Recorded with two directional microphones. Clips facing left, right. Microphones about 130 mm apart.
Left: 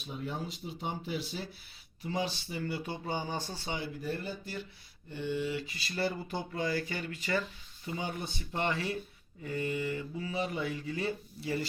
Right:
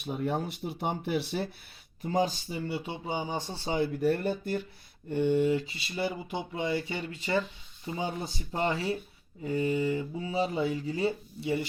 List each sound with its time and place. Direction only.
0.0 s speech: 60° right (ahead or behind)
2.0 s speech: 45° right (ahead or behind)
2.5 s speech: 25° right (ahead or behind)
3.8 s speech: 60° right (ahead or behind)
5.6 s speech: 25° right (ahead or behind)
5.9 s speech: 10° right (ahead or behind)